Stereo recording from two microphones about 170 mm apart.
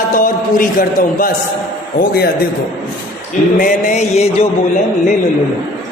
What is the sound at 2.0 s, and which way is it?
Speech, 65° left (ahead or behind).